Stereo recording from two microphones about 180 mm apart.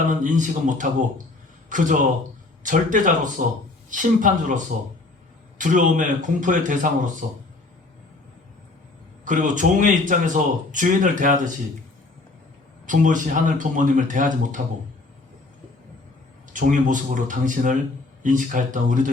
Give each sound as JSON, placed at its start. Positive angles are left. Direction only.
{"t": 0.1, "sound": "speech", "side_deg": -45}
{"t": 9.2, "sound": "speech", "side_deg": -45}
{"t": 12.8, "sound": "speech", "side_deg": -45}
{"t": 16.5, "sound": "speech", "side_deg": -45}